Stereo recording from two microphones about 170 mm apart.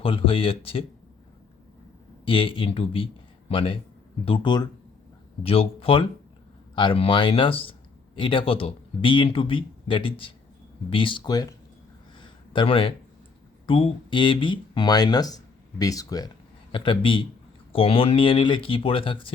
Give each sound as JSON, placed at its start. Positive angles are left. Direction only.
{"t": 0.0, "sound": "speech", "side_deg": 35}
{"t": 2.2, "sound": "speech", "side_deg": 30}
{"t": 12.2, "sound": "a sound", "side_deg": 30}
{"t": 13.7, "sound": "speech", "side_deg": 30}